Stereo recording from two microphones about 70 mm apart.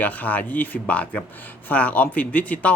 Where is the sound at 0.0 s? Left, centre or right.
Left.